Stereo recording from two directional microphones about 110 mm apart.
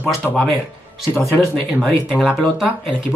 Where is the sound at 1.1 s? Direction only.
25° left (ahead or behind).